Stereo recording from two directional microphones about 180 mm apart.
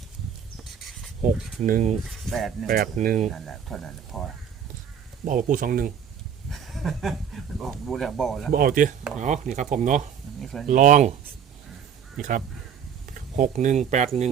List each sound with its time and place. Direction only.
1.6 s speech: 45° right (ahead or behind)
2.0 s speech: centre (ahead or behind)
2.6 s speech: 55° right (ahead or behind)
3.2 s speech: centre (ahead or behind)
5.2 s speech: 50° right (ahead or behind)
6.5 s speech: centre (ahead or behind)
8.5 s speech: 50° right (ahead or behind)
10.4 s speech: centre (ahead or behind)
10.7 s speech: 45° right (ahead or behind)
13.1 s speech: 45° right (ahead or behind)